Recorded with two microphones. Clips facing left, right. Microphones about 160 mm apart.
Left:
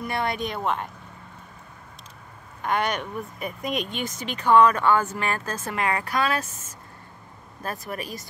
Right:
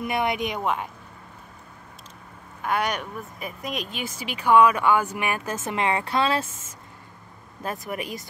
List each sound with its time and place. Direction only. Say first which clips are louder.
0.0 s speech: right 2 dB; 20° right (ahead or behind)
0.6 s speech: even; 5° right (ahead or behind)
2.6 s speech: even; 10° right (ahead or behind)